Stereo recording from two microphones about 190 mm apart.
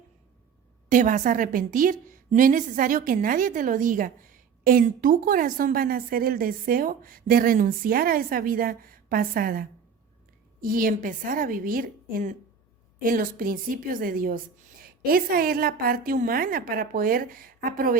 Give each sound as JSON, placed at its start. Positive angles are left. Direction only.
{"t": 0.9, "sound": "a woman's voice", "side_deg": -40}